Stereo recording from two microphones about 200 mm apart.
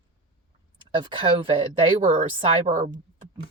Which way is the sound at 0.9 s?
25° right (ahead or behind).